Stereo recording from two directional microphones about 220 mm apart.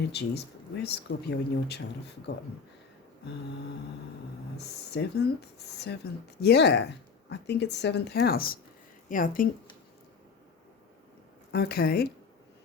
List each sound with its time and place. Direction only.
0.1 s speech: 50° left (ahead or behind)
4.5 s a woman's voice: 50° left (ahead or behind)
11.5 s speech: 45° left (ahead or behind)